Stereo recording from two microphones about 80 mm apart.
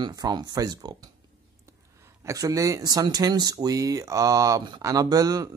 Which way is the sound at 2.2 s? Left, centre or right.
Right.